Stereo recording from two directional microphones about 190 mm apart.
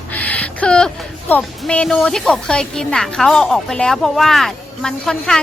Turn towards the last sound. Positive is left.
turn(degrees=5)  # may be behind; listen again after turning